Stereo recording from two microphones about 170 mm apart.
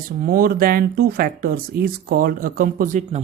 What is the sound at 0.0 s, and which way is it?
Speech, 60° right (ahead or behind).